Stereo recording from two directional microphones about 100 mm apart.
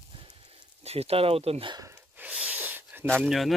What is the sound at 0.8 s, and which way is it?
Speech, 90° right.